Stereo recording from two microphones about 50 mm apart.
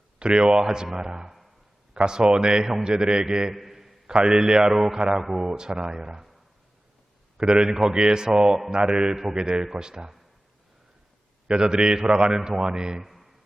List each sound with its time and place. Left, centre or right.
0.2 s a man's voice: centre
3.5 s a sound: centre
4.1 s a man's voice: centre
7.3 s a man's voice: centre
11.4 s a man's voice: centre
13.1 s a sound: centre